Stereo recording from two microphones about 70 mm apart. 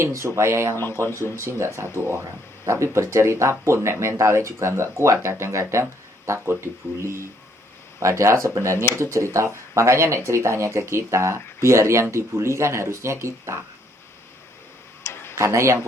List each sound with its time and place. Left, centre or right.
0.0 s speech: right
15.0 s tick-tock: left
15.4 s speech: right